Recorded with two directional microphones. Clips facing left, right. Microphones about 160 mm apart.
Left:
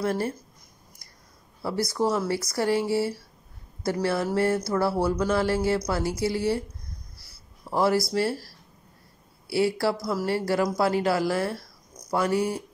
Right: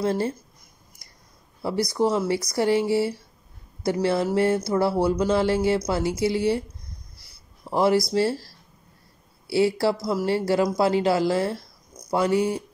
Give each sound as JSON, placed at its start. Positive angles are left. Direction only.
{"t": 0.0, "sound": "speech", "side_deg": -25}
{"t": 1.6, "sound": "speech", "side_deg": -15}